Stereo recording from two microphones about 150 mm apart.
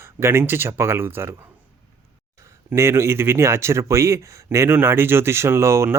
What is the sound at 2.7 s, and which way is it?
Speech, 15° right (ahead or behind).